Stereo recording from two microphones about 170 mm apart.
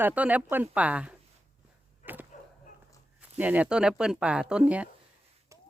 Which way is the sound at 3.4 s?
10° right (ahead or behind).